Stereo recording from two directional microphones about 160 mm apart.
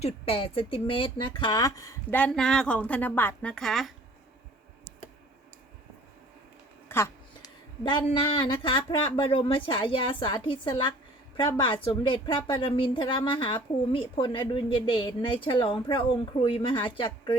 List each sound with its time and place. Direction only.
0.0 s speech: 35° left (ahead or behind); by 3.9 s centre (ahead or behind)
6.8 s a sound: 15° left (ahead or behind)
7.9 s a woman's voice: 30° left (ahead or behind)